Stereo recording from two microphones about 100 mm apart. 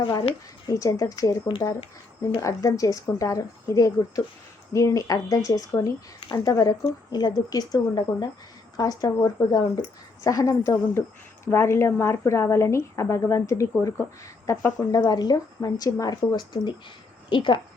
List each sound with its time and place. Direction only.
0.0 s speech: 50° left (ahead or behind)
0.7 s speech: 35° left (ahead or behind)
2.4 s a woman's voice: 35° left (ahead or behind); by 17.6 s 55° left (ahead or behind)